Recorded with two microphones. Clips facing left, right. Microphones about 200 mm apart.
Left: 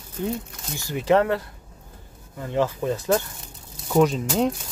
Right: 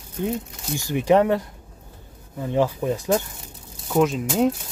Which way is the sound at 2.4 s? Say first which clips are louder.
Right 2 dB; 15° right (ahead or behind).